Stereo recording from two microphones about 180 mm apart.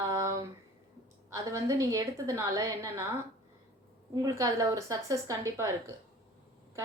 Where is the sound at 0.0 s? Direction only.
20° right (ahead or behind).